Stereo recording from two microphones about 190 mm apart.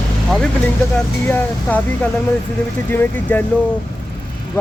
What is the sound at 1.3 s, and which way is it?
Speech, 10° left (ahead or behind).